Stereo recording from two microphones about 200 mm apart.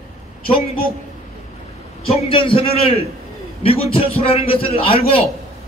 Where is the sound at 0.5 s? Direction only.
45° left (ahead or behind).